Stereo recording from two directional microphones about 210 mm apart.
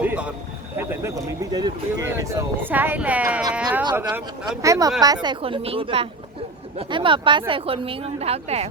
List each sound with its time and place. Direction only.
0.0 s a sound: 5° right (ahead or behind)
0.8 s speech: 10° right (ahead or behind)
3.8 s speech: 20° right (ahead or behind)